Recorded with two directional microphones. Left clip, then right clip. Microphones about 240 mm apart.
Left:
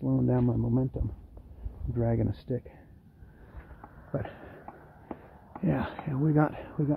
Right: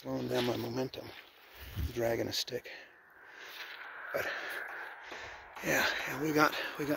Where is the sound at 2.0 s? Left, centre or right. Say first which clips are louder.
Left 1 dB; centre.